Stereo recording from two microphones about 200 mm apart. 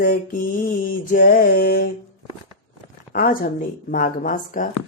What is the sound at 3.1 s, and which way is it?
Speech, 45° left (ahead or behind).